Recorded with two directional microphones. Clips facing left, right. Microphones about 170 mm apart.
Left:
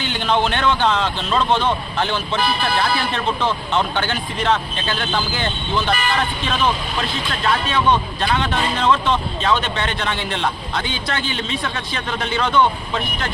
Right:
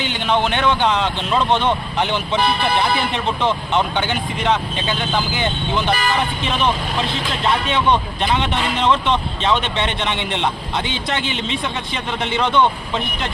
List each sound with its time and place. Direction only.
0.0 s speech: 15° right (ahead or behind)
8.2 s speech: 20° right (ahead or behind)